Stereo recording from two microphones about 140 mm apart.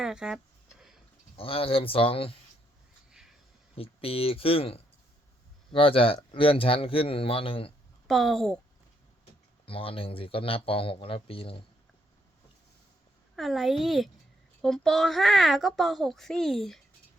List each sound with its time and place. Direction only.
0.0 s a sound: 5° right (ahead or behind)
1.4 s speech: 40° left (ahead or behind)
3.1 s a sound: 5° right (ahead or behind)
3.8 s speech: 45° left (ahead or behind)
8.0 s a child's voice: centre (ahead or behind)
9.6 s speech: 40° left (ahead or behind)
13.3 s a child's voice: centre (ahead or behind)